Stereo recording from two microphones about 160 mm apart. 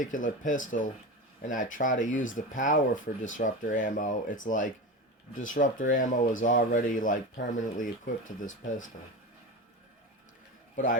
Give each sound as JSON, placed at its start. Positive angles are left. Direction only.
{"t": 0.0, "sound": "speech", "side_deg": 55}